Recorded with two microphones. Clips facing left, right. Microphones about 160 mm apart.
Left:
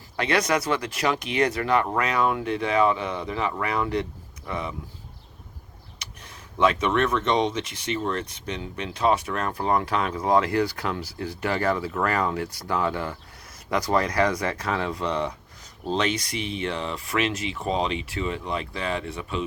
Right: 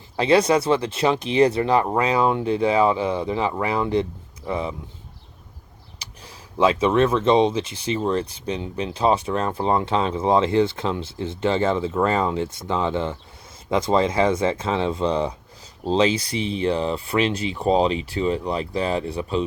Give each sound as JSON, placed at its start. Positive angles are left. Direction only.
{"t": 0.2, "sound": "speech", "side_deg": -30}
{"t": 6.0, "sound": "speech", "side_deg": -30}